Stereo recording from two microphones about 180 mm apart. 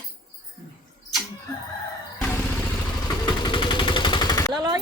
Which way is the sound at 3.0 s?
25° left (ahead or behind).